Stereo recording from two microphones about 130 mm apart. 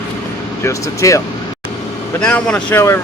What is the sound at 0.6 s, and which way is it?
Speech, 25° left (ahead or behind).